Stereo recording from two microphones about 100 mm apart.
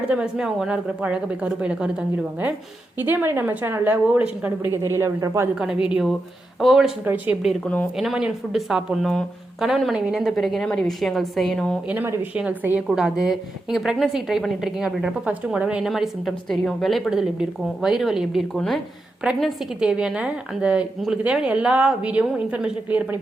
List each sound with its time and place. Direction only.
0.1 s a woman's voice: 10° right (ahead or behind)
4.9 s speech: 30° right (ahead or behind)
5.5 s a woman's voice: 10° right (ahead or behind)
7.0 s speech: 20° right (ahead or behind)
7.9 s speech: 5° right (ahead or behind)
11.9 s a woman's voice: 20° right (ahead or behind)
15.9 s speech: centre (ahead or behind)
19.9 s a woman's voice: 10° right (ahead or behind)